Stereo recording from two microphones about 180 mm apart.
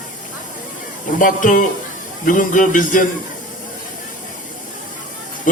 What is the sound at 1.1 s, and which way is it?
A man's voice, 45° left (ahead or behind).